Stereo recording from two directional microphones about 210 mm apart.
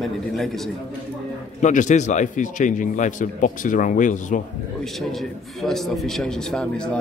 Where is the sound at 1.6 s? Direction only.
35° left (ahead or behind).